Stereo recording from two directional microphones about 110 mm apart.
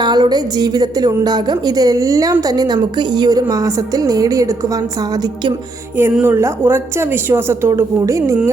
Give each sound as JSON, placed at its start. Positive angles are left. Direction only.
{"t": 0.0, "sound": "a woman's voice", "side_deg": -40}
{"t": 6.2, "sound": "speech", "side_deg": -20}